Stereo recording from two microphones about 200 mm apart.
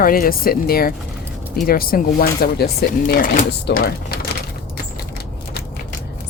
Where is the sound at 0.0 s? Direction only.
45° left (ahead or behind).